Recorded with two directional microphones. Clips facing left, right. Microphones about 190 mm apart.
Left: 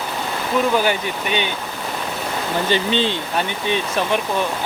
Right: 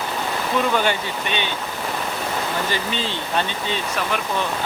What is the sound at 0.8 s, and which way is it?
Speech, 10° left (ahead or behind).